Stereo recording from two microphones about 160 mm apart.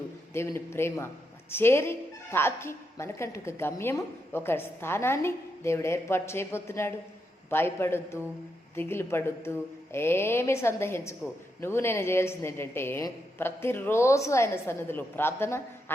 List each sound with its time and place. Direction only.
0.3 s a woman's voice: 15° left (ahead or behind)